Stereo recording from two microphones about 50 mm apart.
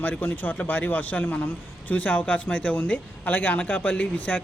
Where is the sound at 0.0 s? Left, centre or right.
Left.